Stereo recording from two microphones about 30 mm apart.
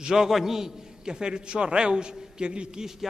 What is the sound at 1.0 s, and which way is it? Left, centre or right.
A man's voice, right.